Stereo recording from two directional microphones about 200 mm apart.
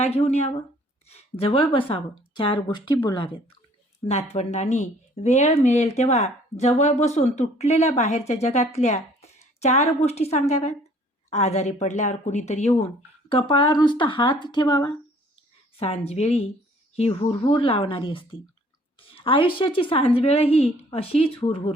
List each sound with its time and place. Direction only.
0.1 s speech: 30° left (ahead or behind)
4.3 s a woman's voice: 35° left (ahead or behind)
15.8 s speech: 30° left (ahead or behind)